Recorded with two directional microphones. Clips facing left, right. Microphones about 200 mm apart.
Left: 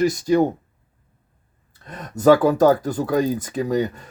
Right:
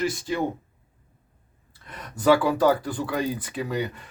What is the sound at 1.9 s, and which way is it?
Speech, 40° left (ahead or behind).